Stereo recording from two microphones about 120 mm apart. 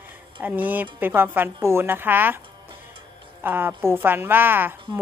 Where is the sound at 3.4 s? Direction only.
15° right (ahead or behind).